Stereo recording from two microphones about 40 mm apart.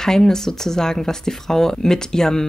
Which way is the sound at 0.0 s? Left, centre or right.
Centre.